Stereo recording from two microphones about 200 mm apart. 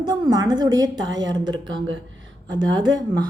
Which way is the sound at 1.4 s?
70° right (ahead or behind).